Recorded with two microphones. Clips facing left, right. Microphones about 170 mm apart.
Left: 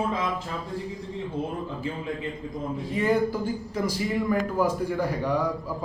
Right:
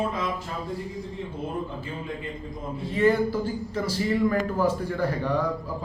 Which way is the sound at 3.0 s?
10° left (ahead or behind).